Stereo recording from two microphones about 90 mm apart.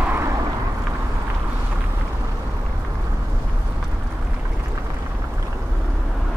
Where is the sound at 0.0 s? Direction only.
25° right (ahead or behind).